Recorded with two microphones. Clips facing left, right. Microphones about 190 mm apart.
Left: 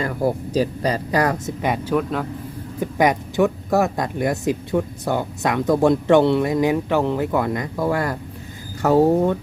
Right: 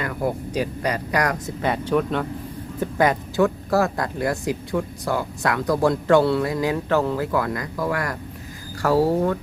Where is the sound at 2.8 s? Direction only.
15° left (ahead or behind).